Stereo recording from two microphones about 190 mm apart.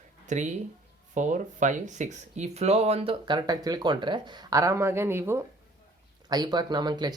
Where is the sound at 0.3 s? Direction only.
40° right (ahead or behind).